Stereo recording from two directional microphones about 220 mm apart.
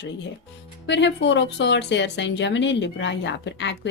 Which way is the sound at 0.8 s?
55° left (ahead or behind).